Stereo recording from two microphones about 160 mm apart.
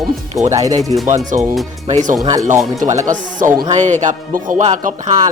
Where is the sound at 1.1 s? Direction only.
50° right (ahead or behind).